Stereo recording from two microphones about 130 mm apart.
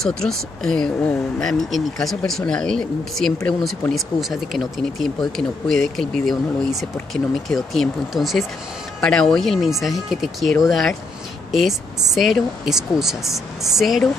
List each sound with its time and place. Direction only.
0.0 s speech: 5° left (ahead or behind)
12.1 s speech: centre (ahead or behind)